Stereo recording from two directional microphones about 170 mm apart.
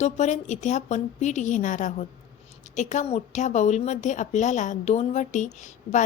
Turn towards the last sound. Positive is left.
turn(degrees=45)  # may be behind; listen again after turning